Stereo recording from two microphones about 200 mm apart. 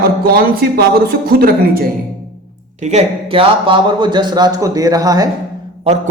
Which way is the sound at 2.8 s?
35° right (ahead or behind).